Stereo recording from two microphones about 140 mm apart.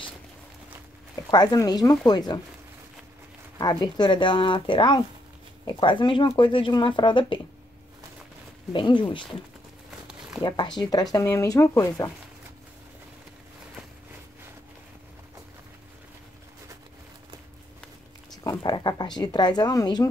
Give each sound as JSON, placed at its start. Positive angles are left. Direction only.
{"t": 1.3, "sound": "speech", "side_deg": 30}
{"t": 3.5, "sound": "speech", "side_deg": 30}
{"t": 8.7, "sound": "speech", "side_deg": 35}
{"t": 9.8, "sound": "a sound", "side_deg": -5}
{"t": 10.4, "sound": "speech", "side_deg": 30}
{"t": 18.3, "sound": "speech", "side_deg": 25}